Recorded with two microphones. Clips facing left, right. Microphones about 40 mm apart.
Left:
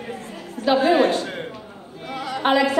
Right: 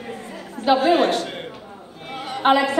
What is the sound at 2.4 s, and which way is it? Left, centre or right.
Speech, right.